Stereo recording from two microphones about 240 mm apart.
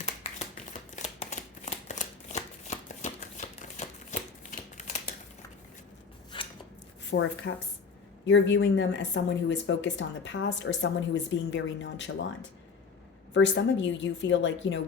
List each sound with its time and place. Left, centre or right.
0.0 s shuffling cards: left
6.3 s scissors: centre
7.1 s speech: left